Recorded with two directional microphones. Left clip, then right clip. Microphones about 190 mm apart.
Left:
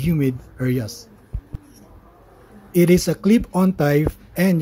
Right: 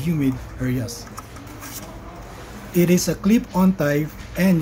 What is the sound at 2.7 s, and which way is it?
A man's voice, 45° left (ahead or behind).